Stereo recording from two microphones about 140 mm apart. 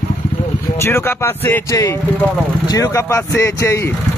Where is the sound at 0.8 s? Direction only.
15° left (ahead or behind).